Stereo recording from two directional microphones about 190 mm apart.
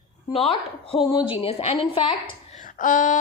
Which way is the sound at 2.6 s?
45° left (ahead or behind).